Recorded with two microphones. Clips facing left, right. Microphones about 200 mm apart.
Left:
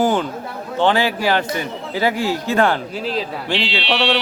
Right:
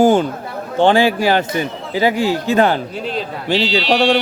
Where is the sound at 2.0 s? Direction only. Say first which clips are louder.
Right 4 dB; 20° right (ahead or behind).